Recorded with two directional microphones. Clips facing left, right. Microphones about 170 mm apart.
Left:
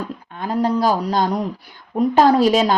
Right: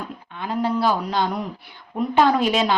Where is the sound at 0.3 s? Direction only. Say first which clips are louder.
Left 4 dB; 40° left (ahead or behind).